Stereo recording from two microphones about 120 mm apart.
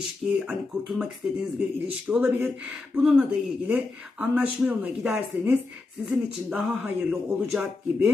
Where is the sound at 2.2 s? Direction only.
20° right (ahead or behind).